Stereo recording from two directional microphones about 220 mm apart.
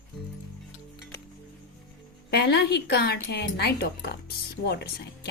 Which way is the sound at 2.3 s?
50° left (ahead or behind).